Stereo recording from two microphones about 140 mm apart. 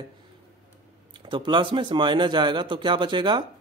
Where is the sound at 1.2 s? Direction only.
35° right (ahead or behind).